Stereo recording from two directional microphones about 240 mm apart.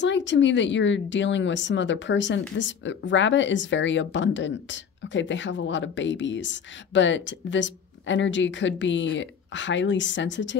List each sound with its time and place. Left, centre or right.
0.0 s speech: left